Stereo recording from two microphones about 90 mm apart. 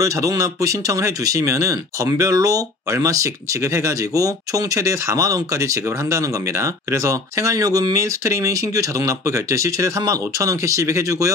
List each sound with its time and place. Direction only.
0.0 s speech: 40° right (ahead or behind)